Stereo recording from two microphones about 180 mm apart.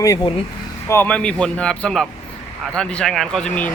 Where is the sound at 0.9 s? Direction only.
10° left (ahead or behind).